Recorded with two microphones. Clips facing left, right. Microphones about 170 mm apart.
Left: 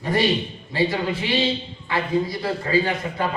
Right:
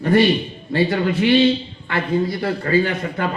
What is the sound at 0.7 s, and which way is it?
A man's voice, 60° right (ahead or behind).